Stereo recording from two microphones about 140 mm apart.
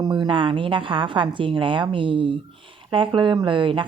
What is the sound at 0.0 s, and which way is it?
Speech, 35° right (ahead or behind).